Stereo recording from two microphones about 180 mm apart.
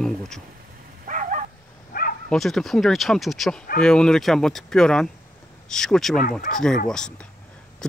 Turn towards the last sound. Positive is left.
turn(degrees=5)  # may be behind; listen again after turning